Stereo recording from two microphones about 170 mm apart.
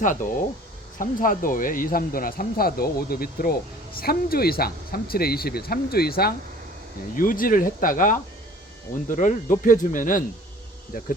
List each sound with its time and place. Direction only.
0.0 s speech: 50° left (ahead or behind)